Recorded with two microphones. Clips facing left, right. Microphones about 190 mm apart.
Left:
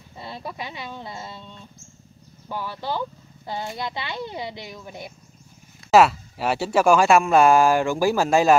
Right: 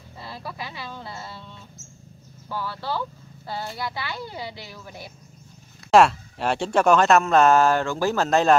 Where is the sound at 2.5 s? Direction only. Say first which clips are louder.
Left 1 dB; 15° left (ahead or behind).